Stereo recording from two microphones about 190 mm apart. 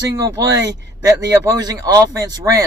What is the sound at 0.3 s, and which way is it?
Speech, 20° right (ahead or behind).